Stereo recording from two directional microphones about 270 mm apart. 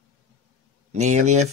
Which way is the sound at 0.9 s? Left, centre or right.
Right.